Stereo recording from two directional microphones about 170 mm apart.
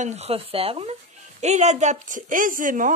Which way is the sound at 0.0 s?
40° right (ahead or behind).